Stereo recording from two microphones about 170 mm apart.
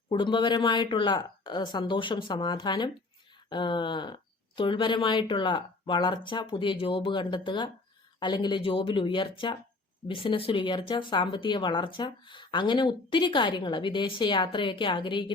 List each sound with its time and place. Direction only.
0.1 s speech: 30° left (ahead or behind)